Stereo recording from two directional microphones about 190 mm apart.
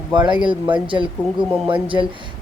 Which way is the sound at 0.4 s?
25° right (ahead or behind).